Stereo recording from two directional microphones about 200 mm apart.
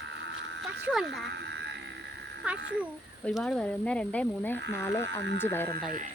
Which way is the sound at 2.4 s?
5° right (ahead or behind).